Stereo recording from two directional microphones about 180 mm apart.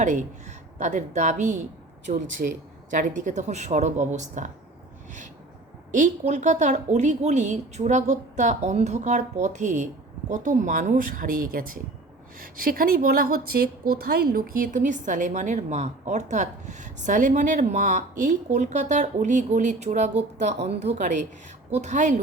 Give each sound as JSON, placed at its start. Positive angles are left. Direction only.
{"t": 0.0, "sound": "a woman's voice", "side_deg": -40}
{"t": 5.9, "sound": "a woman's voice", "side_deg": -45}